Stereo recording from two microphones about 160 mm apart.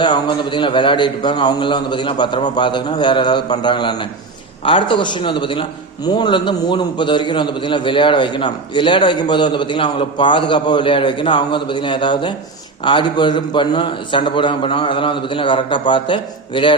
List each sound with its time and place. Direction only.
0.0 s a man's voice: 30° left (ahead or behind)